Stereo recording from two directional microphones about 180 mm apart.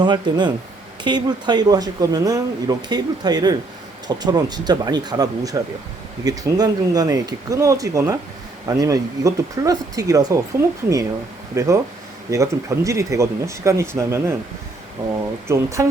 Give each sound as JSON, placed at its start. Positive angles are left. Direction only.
{"t": 0.0, "sound": "speech", "side_deg": -25}
{"t": 11.5, "sound": "speech", "side_deg": -15}
{"t": 15.4, "sound": "speech", "side_deg": -15}